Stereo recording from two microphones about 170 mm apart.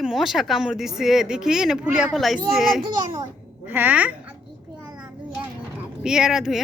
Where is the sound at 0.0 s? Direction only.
Centre (ahead or behind).